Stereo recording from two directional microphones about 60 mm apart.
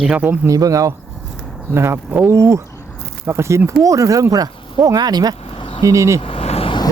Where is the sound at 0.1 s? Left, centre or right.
Right.